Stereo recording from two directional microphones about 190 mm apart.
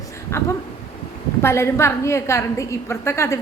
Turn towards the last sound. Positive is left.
turn(degrees=15)  # may be behind; listen again after turning